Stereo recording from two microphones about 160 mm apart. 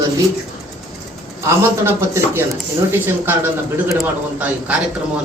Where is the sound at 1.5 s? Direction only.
15° right (ahead or behind).